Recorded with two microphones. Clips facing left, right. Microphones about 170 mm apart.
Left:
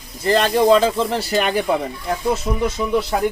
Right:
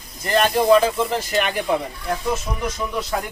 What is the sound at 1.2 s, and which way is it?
Speech, 35° left (ahead or behind).